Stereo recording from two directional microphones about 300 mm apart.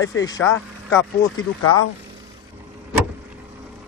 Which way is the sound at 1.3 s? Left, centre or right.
Left.